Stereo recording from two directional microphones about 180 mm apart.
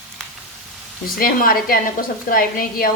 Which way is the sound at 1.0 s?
55° left (ahead or behind).